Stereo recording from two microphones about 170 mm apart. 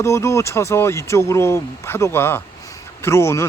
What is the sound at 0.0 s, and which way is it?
Speech, 15° left (ahead or behind).